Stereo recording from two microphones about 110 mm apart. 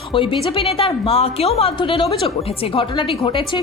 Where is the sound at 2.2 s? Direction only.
65° left (ahead or behind); by 3.6 s 45° left (ahead or behind).